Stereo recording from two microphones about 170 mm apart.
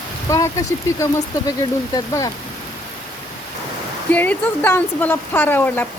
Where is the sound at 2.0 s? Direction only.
20° left (ahead or behind).